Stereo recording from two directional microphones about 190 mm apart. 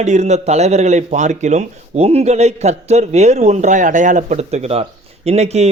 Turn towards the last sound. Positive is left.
turn(degrees=-35)  # may be behind; listen again after turning